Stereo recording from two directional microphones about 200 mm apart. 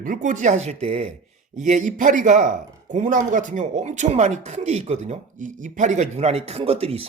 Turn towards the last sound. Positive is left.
turn(degrees=-30)  # may be behind; listen again after turning